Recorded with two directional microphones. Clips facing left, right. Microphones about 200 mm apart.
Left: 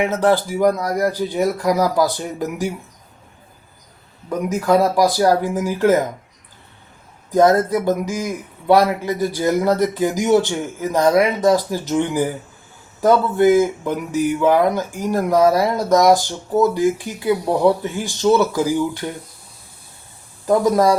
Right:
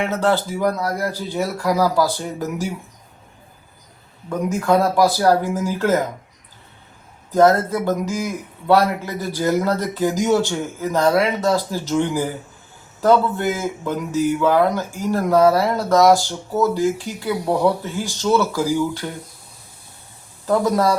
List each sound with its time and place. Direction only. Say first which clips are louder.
0.0 s a man's voice: left 3 dB; 15° left (ahead or behind)
4.3 s a man's voice: left 1 dB; 15° left (ahead or behind)
7.3 s a man's voice: left 1 dB; 15° left (ahead or behind)
20.5 s a man's voice: left 3 dB; 15° left (ahead or behind)